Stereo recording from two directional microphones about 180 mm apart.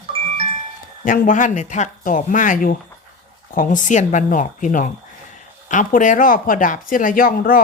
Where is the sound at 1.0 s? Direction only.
50° left (ahead or behind).